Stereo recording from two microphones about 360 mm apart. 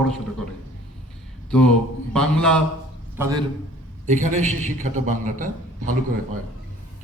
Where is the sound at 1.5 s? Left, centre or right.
Centre.